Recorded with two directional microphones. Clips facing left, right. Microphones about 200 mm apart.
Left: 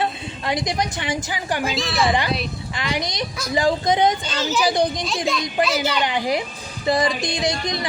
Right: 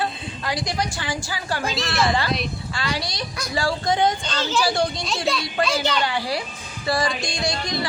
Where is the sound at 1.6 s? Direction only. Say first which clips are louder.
Left 1 dB; centre (ahead or behind).